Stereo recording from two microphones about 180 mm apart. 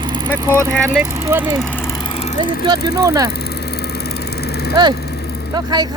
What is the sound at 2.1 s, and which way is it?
Vehicle, 35° left (ahead or behind).